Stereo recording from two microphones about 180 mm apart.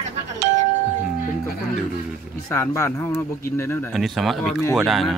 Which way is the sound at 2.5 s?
15° left (ahead or behind).